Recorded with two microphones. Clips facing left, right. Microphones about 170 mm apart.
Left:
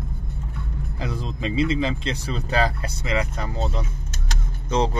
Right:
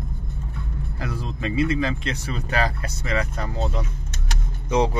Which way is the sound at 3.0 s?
15° left (ahead or behind).